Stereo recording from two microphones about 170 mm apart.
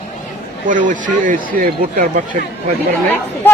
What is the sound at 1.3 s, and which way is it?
Speech, 55° right (ahead or behind).